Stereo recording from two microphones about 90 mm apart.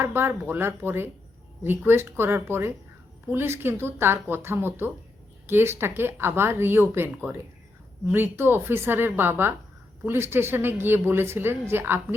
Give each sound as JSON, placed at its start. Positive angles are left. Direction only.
{"t": 0.0, "sound": "speech", "side_deg": -25}